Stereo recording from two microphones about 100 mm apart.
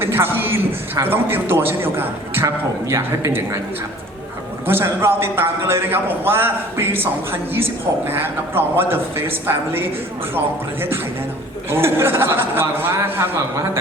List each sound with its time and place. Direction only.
0.0 s a man's voice: 25° right (ahead or behind)
4.6 s a man's voice: 25° right (ahead or behind)